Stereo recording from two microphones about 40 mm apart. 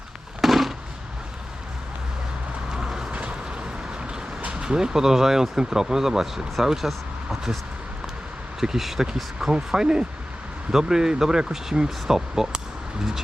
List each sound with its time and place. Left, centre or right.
0.4 s a sound: centre
2.7 s vehicle: centre
3.1 s vehicle: right
3.9 s vehicle: centre
4.4 s speech: right; by 7.6 s centre
8.6 s speech: centre